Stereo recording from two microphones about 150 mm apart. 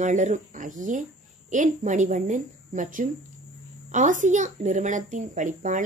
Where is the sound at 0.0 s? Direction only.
55° right (ahead or behind).